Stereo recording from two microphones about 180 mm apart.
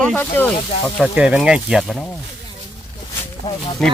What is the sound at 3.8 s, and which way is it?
Speech, centre (ahead or behind).